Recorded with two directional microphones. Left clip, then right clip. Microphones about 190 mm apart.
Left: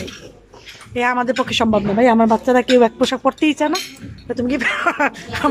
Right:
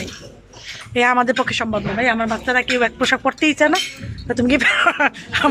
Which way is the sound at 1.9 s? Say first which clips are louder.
Left 5 dB; 30° left (ahead or behind).